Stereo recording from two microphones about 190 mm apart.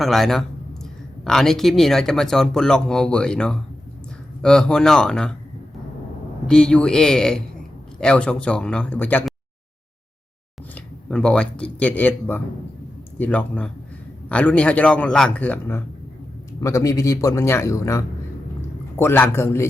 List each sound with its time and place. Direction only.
0.0 s speech: centre (ahead or behind)
6.5 s speech: 5° left (ahead or behind)
10.8 s a man's voice: 5° left (ahead or behind)